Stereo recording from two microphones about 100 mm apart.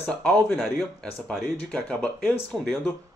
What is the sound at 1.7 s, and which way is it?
Speech, 10° left (ahead or behind).